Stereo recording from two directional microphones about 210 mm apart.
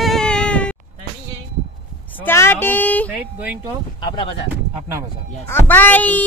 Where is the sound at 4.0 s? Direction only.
20° left (ahead or behind).